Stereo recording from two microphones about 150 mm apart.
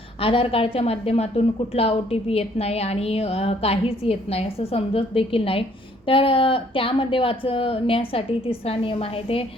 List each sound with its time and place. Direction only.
0.2 s a woman's voice: 40° left (ahead or behind)